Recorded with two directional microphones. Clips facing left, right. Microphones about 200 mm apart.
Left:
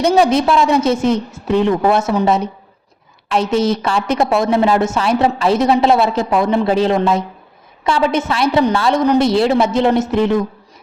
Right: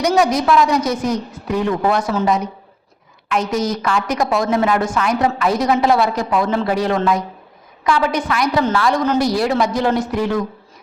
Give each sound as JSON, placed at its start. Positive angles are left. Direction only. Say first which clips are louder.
{"t": 0.0, "sound": "a woman's voice", "louder": "left 3 dB", "side_deg": 25}